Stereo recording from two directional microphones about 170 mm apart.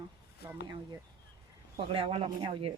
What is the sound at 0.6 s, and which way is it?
Speech, 20° right (ahead or behind).